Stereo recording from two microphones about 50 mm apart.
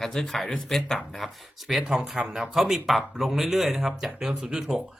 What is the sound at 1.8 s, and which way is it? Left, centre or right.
Speech, centre.